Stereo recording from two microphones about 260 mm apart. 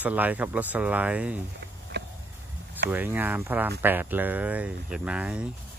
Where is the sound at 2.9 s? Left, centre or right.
Centre.